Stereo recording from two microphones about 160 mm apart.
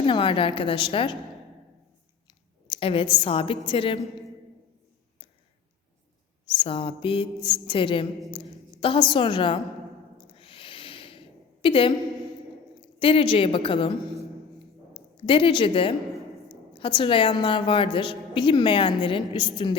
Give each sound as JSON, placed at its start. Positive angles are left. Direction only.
{"t": 0.0, "sound": "a woman's voice", "side_deg": 35}
{"t": 2.6, "sound": "a woman's voice", "side_deg": 35}
{"t": 6.5, "sound": "a woman's voice", "side_deg": 30}
{"t": 10.3, "sound": "a sound", "side_deg": 35}
{"t": 13.0, "sound": "a woman's voice", "side_deg": 35}
{"t": 15.2, "sound": "a woman's voice", "side_deg": 35}